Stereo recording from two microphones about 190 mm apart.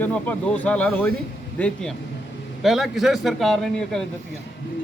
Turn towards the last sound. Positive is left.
turn(degrees=5)  # may be behind; listen again after turning